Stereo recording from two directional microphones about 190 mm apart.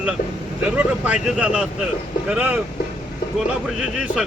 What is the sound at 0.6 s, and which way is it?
Speech, 5° right (ahead or behind).